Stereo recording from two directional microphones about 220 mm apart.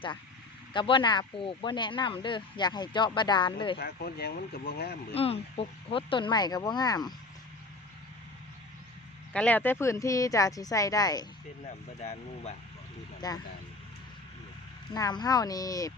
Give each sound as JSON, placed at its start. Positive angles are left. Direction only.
{"t": 0.7, "sound": "speech", "side_deg": 20}
{"t": 3.8, "sound": "speech", "side_deg": 45}
{"t": 5.1, "sound": "speech", "side_deg": 25}
{"t": 9.3, "sound": "speech", "side_deg": 5}
{"t": 12.0, "sound": "speech", "side_deg": 30}
{"t": 13.2, "sound": "speech", "side_deg": 15}
{"t": 14.9, "sound": "speech", "side_deg": 15}